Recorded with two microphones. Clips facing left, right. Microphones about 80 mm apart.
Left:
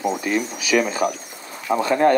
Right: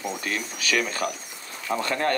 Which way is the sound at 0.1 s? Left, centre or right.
Centre.